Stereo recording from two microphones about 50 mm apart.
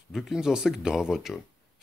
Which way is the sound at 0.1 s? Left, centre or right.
Centre.